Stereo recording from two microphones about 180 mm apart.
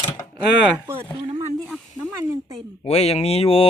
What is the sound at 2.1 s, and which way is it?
Speech, 15° right (ahead or behind).